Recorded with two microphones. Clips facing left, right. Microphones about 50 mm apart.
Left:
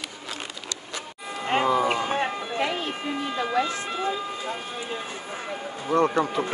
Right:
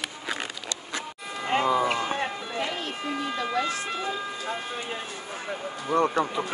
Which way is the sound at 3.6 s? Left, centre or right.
Left.